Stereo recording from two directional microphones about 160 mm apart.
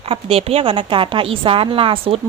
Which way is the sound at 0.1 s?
35° right (ahead or behind).